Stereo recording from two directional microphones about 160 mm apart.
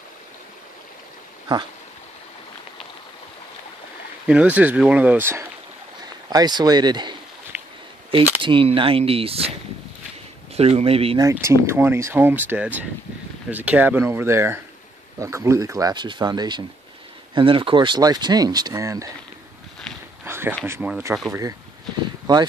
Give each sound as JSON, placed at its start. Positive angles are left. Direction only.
{"t": 4.3, "sound": "speech", "side_deg": -10}
{"t": 6.2, "sound": "speech", "side_deg": -25}
{"t": 7.5, "sound": "a sound", "side_deg": -10}
{"t": 8.4, "sound": "speech", "side_deg": -30}
{"t": 10.5, "sound": "speech", "side_deg": -40}
{"t": 11.3, "sound": "speech", "side_deg": -15}
{"t": 20.2, "sound": "a sound", "side_deg": -15}
{"t": 20.6, "sound": "speech", "side_deg": -15}
{"t": 22.2, "sound": "a sound", "side_deg": -25}